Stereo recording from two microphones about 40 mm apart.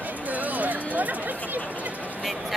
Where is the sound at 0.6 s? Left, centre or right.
Right.